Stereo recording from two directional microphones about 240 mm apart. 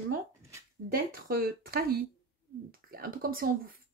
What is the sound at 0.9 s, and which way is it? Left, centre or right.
Speech, right.